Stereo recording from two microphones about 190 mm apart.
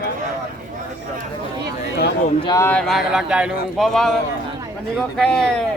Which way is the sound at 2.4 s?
15° left (ahead or behind).